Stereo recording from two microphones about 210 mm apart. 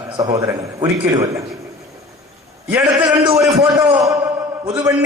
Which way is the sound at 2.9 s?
20° right (ahead or behind).